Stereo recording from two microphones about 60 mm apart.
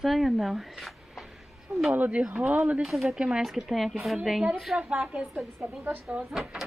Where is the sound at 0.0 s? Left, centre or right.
Centre.